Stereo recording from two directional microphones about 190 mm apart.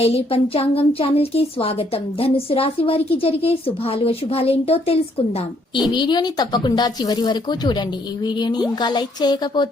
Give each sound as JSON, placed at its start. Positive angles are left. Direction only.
{"t": 0.0, "sound": "a woman's voice", "side_deg": 30}